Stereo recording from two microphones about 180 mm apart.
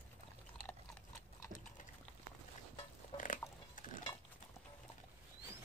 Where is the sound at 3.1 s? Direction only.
30° left (ahead or behind).